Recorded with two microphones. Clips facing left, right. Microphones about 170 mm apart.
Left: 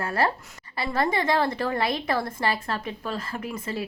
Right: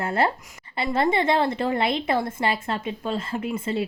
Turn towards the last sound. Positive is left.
turn(degrees=-25)  # may be behind; listen again after turning